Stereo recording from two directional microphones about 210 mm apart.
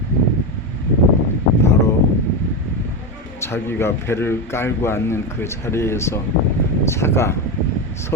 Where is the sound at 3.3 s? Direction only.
10° left (ahead or behind).